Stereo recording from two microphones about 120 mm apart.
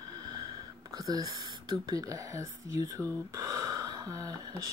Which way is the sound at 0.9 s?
30° right (ahead or behind).